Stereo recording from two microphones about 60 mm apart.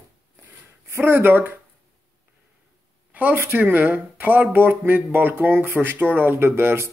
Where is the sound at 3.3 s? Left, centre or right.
Right.